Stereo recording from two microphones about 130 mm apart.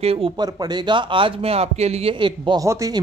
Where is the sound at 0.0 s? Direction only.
50° right (ahead or behind).